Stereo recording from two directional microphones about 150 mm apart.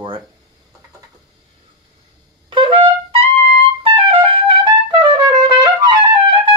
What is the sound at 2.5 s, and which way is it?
Wind instrument, 35° right (ahead or behind).